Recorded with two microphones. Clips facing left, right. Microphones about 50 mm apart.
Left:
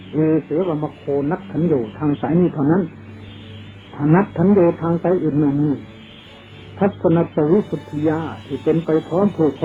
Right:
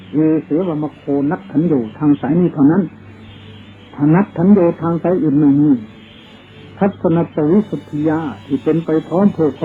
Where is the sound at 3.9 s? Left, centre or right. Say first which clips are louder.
Right 3 dB; centre.